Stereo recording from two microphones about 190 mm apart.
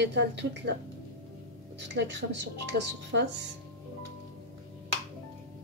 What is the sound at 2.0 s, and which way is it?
Speech, 65° right (ahead or behind).